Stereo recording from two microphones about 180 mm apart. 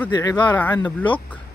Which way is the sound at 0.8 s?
25° left (ahead or behind).